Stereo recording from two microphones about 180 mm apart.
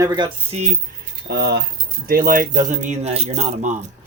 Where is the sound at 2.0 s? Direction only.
55° right (ahead or behind).